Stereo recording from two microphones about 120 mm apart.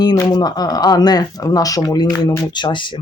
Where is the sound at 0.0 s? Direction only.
35° left (ahead or behind).